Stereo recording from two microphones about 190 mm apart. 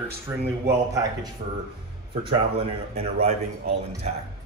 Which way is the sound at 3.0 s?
30° right (ahead or behind).